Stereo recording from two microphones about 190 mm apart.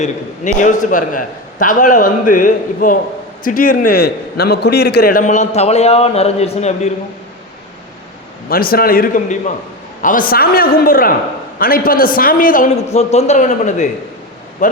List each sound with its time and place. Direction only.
0.0 s a man's voice: 40° left (ahead or behind)
8.4 s a man's voice: 50° left (ahead or behind)